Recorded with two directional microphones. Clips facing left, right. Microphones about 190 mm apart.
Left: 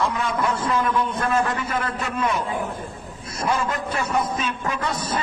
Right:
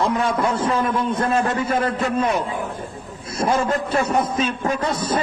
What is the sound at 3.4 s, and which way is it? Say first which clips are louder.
A man's voice: right 4 dB; 35° right (ahead or behind).